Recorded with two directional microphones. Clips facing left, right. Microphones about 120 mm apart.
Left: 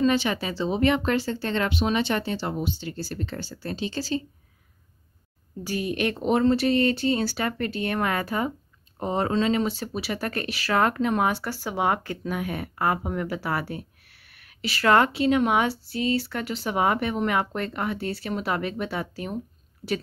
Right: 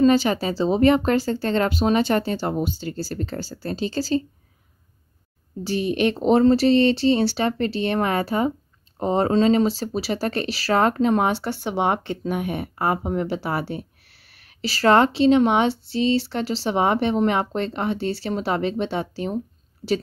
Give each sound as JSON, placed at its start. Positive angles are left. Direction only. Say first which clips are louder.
{"t": 0.0, "sound": "speech", "louder": "right 5 dB", "side_deg": -35}
{"t": 5.6, "sound": "speech", "louder": "right 5 dB", "side_deg": -25}